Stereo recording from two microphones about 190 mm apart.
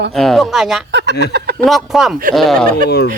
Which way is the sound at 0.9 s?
65° right (ahead or behind).